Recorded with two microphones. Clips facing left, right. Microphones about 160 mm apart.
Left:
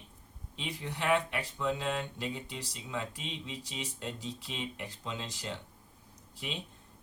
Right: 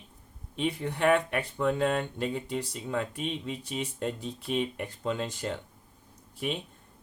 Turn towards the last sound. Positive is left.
turn(degrees=-55)  # may be behind; listen again after turning